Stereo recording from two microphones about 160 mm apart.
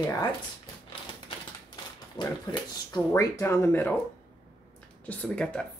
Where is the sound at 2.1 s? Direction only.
25° left (ahead or behind).